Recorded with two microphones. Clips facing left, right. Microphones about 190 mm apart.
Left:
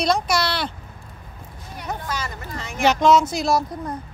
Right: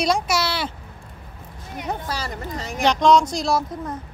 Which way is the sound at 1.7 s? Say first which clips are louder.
Right 3 dB; 20° right (ahead or behind).